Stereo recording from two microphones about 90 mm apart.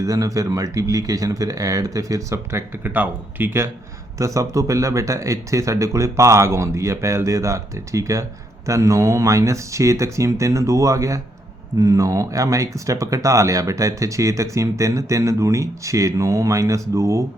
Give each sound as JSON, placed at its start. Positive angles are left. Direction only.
{"t": 0.0, "sound": "speech", "side_deg": -40}
{"t": 4.2, "sound": "speech", "side_deg": -35}